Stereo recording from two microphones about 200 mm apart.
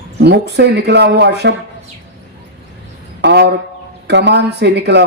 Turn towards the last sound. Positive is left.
turn(degrees=-60)  # may be behind; listen again after turning